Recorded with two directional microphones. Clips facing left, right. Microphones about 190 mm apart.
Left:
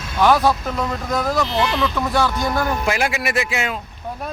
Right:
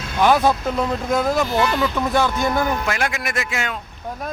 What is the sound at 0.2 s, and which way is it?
Speech, 20° right (ahead or behind).